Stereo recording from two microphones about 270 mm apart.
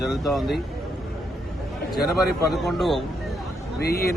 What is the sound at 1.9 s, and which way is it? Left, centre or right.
Speech, centre.